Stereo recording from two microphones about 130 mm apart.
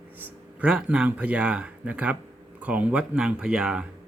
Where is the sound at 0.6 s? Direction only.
5° right (ahead or behind).